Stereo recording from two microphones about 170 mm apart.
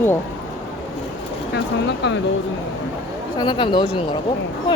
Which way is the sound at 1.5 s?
90° left.